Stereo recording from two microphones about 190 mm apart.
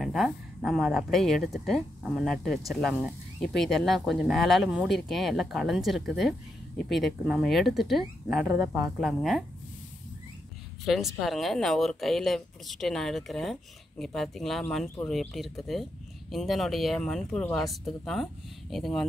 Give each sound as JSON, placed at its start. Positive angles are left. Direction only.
{"t": 0.0, "sound": "speech", "side_deg": 0}
{"t": 8.5, "sound": "speech", "side_deg": -15}
{"t": 9.0, "sound": "speech", "side_deg": 0}
{"t": 10.9, "sound": "speech", "side_deg": 0}